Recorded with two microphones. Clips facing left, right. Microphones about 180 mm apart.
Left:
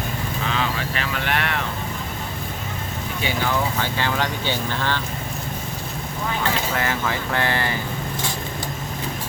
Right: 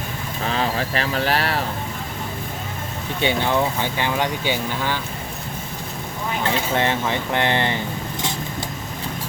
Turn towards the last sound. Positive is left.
turn(degrees=-20)  # may be behind; listen again after turning